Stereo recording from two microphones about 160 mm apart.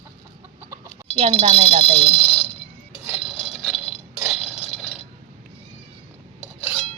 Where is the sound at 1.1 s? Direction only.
35° right (ahead or behind).